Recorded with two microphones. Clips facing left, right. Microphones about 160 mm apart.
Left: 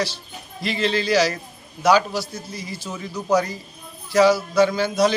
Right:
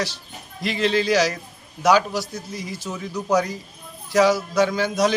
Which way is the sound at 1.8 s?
Centre (ahead or behind).